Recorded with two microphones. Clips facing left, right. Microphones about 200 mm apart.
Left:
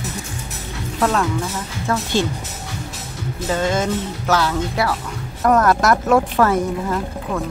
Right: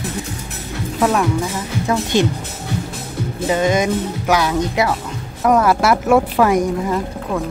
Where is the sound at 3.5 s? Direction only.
15° right (ahead or behind).